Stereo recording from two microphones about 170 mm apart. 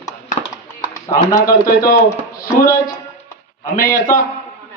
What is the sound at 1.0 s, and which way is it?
Speech, 20° left (ahead or behind).